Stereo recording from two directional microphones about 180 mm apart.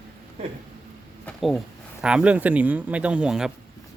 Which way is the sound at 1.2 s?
Centre (ahead or behind).